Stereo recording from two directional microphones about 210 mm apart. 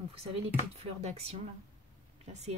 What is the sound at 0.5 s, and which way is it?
Speech, 30° right (ahead or behind).